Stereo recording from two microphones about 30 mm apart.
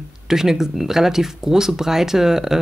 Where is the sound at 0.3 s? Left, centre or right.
Centre.